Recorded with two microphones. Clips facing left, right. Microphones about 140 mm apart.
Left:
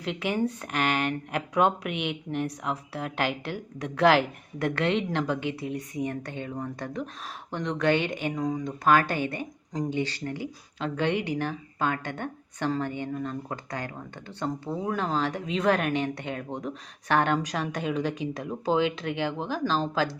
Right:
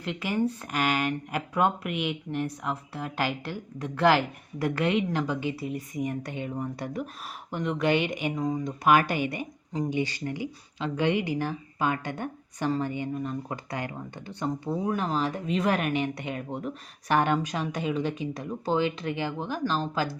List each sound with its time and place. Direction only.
0.0 s a woman's voice: centre (ahead or behind)
10.2 s a woman's voice: 50° left (ahead or behind)
11.4 s a woman's voice: 10° right (ahead or behind)